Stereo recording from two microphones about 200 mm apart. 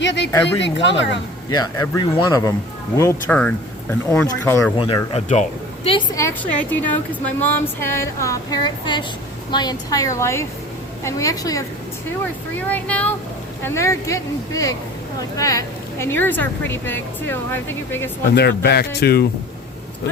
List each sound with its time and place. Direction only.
0.0 s a woman's voice: 65° left (ahead or behind)
1.5 s a woman's voice: 20° left (ahead or behind)
4.8 s speech: 25° left (ahead or behind)
6.1 s a woman's voice: 10° left (ahead or behind)
18.3 s speech: 55° left (ahead or behind)